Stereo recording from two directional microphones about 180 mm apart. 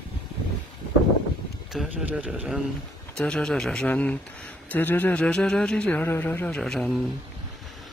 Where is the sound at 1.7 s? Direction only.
5° right (ahead or behind).